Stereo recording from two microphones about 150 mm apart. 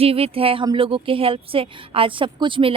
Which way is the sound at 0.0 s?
40° right (ahead or behind).